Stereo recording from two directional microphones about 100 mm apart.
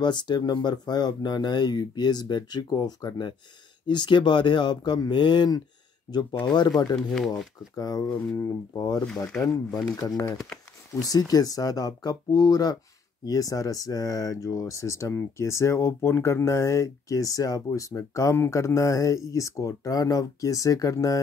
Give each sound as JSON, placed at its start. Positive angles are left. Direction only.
{"t": 0.0, "sound": "speech", "side_deg": 50}
{"t": 7.0, "sound": "speech", "side_deg": 5}
{"t": 7.7, "sound": "speech", "side_deg": 40}